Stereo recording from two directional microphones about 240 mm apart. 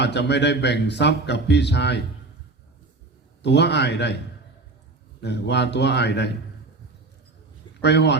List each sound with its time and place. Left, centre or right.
0.0 s a man's voice: left
3.4 s a man's voice: left
5.2 s a man's voice: left
7.8 s a man's voice: left